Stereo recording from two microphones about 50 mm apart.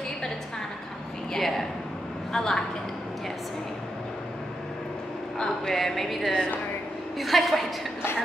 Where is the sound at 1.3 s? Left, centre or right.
Centre.